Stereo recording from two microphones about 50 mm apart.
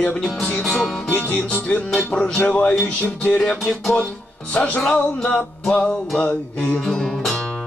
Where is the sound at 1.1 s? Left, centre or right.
Left.